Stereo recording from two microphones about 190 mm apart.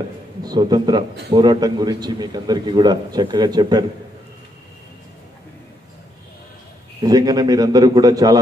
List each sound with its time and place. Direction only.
0.4 s a man's voice: 20° right (ahead or behind)
7.0 s a man's voice: 20° right (ahead or behind)